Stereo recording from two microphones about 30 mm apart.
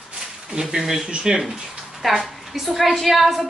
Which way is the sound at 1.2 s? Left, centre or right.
Right.